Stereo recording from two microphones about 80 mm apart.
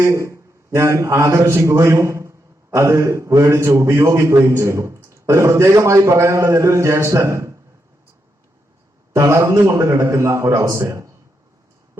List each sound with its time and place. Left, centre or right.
0.0 s a man's voice: right
9.1 s a man's voice: right